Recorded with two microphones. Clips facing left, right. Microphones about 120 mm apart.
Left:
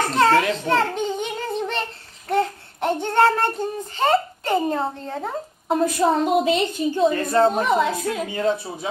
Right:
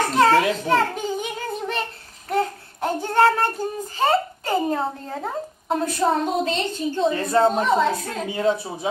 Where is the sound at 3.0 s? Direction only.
5° right (ahead or behind).